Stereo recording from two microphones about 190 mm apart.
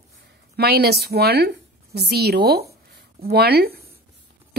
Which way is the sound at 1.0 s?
55° right (ahead or behind).